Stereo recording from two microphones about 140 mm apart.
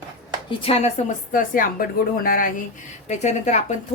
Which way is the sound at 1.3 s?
75° left (ahead or behind).